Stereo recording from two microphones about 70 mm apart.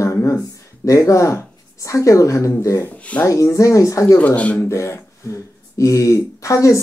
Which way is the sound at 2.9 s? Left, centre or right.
Centre.